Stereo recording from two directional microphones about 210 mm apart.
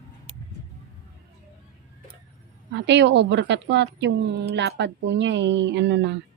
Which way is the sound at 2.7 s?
55° right (ahead or behind).